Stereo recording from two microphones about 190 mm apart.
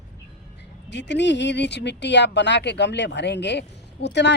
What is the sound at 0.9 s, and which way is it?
Speech, 65° left (ahead or behind).